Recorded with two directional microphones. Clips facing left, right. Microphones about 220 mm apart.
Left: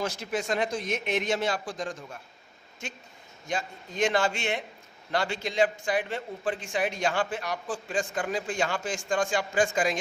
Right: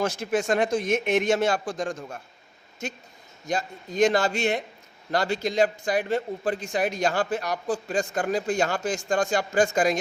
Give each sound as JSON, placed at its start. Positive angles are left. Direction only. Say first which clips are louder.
{"t": 0.0, "sound": "a man's voice", "louder": "right 6 dB", "side_deg": -50}